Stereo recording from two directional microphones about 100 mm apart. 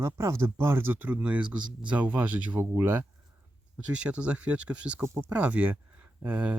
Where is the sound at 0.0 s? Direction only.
30° right (ahead or behind).